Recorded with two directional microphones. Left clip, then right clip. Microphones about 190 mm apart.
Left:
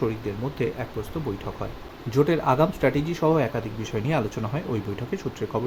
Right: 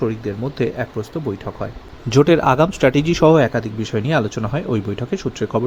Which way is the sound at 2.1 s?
40° right (ahead or behind).